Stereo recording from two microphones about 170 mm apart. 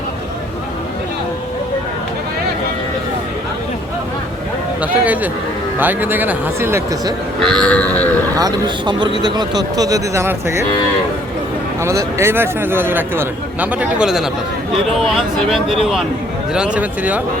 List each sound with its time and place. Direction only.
4.8 s speech: 10° right (ahead or behind)
7.4 s grunt: 5° left (ahead or behind)
8.4 s speech: 25° right (ahead or behind)
11.8 s speech: 15° right (ahead or behind)